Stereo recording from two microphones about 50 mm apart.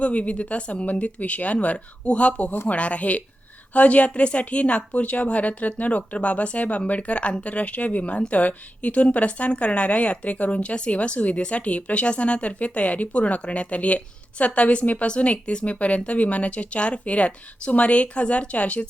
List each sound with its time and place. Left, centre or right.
0.0 s a woman's voice: left